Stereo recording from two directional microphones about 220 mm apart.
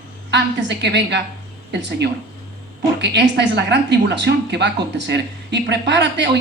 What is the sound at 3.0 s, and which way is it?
Speech, 50° right (ahead or behind).